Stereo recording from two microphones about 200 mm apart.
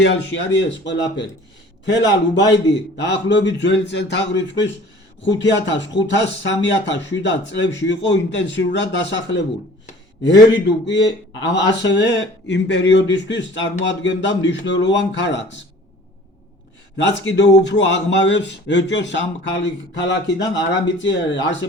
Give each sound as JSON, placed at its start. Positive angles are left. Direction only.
{"t": 0.0, "sound": "speech", "side_deg": 65}
{"t": 17.0, "sound": "speech", "side_deg": 65}